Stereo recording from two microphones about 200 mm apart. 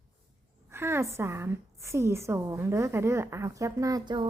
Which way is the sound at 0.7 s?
10° right (ahead or behind).